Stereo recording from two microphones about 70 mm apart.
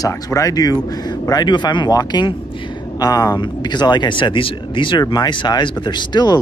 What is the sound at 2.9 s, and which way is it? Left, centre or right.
Speech, left.